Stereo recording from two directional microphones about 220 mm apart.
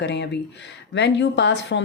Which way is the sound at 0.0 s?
50° left (ahead or behind).